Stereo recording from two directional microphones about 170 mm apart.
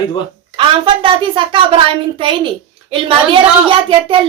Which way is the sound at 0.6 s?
30° right (ahead or behind).